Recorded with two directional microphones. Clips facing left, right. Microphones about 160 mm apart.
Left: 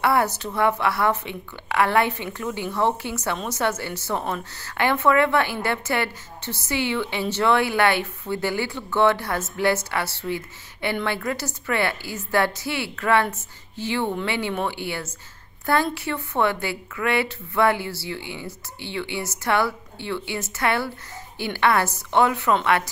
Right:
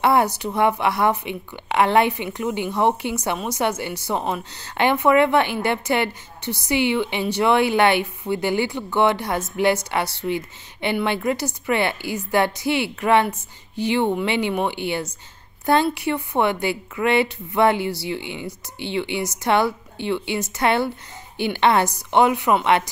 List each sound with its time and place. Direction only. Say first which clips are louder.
0.0 s a woman's voice: right 3 dB; 15° right (ahead or behind)